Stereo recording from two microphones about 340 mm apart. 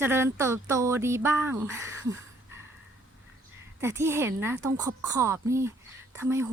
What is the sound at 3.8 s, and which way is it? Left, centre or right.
Speech, centre.